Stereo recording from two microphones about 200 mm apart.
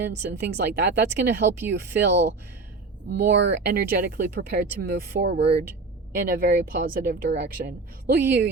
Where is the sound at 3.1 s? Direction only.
60° right (ahead or behind).